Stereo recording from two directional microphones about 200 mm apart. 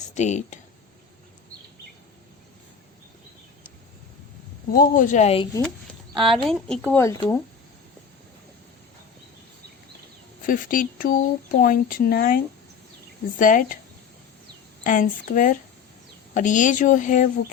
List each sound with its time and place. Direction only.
0.1 s speech: 35° left (ahead or behind)
4.7 s speech: 40° left (ahead or behind)
5.6 s a sound: centre (ahead or behind)
6.4 s speech: 5° left (ahead or behind)
10.4 s speech: 45° left (ahead or behind)
13.4 s speech: 40° left (ahead or behind)
14.8 s speech: 40° left (ahead or behind)